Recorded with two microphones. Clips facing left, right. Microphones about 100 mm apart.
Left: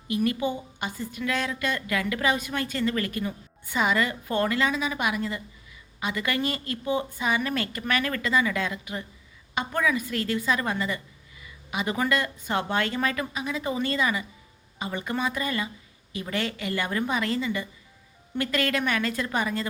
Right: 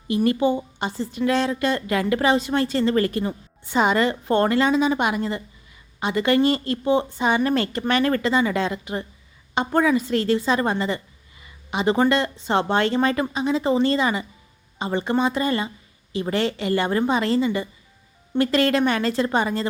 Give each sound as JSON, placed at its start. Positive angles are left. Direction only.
{"t": 0.1, "sound": "a woman's voice", "side_deg": -30}